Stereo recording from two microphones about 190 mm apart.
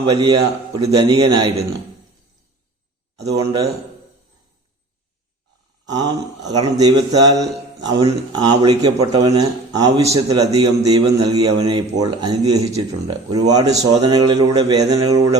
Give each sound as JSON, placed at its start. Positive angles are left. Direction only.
{"t": 0.0, "sound": "a man's voice", "side_deg": -20}
{"t": 3.3, "sound": "a man's voice", "side_deg": -20}
{"t": 5.8, "sound": "a man's voice", "side_deg": -20}